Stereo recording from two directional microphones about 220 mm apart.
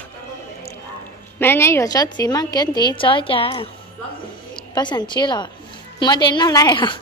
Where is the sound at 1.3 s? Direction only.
10° left (ahead or behind).